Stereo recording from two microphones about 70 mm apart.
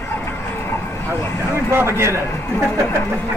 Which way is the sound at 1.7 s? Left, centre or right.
Right.